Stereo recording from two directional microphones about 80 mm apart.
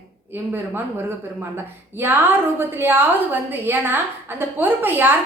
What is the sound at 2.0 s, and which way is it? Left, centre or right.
A woman's voice, right.